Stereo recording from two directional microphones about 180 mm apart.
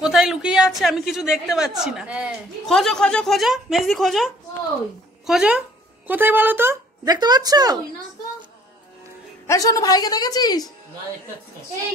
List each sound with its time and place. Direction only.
0.0 s a woman's voice: centre (ahead or behind); by 7.8 s 20° right (ahead or behind)
9.5 s a woman's voice: 20° left (ahead or behind)